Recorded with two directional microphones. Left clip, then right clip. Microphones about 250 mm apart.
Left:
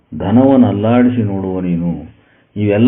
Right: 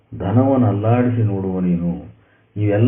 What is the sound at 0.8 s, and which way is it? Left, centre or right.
Speech, left.